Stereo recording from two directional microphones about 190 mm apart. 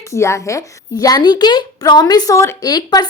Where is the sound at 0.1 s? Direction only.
15° left (ahead or behind).